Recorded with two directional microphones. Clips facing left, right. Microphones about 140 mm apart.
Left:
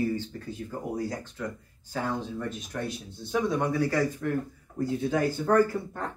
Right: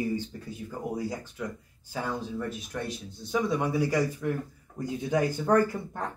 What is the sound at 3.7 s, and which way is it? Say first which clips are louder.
Speech: even; 15° right (ahead or behind).